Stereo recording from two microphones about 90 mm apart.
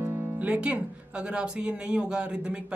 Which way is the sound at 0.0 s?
25° right (ahead or behind).